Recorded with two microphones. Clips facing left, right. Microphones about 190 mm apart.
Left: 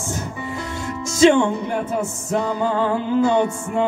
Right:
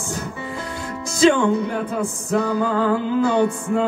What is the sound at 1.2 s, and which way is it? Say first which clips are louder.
Music: left 1 dB; 25° left (ahead or behind).